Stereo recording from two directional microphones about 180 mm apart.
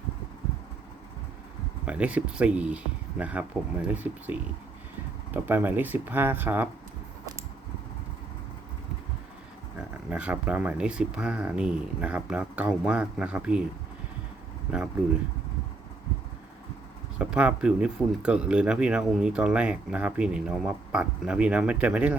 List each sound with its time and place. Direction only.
1.8 s speech: 5° right (ahead or behind)
9.7 s speech: 5° right (ahead or behind)
17.2 s speech: 5° right (ahead or behind)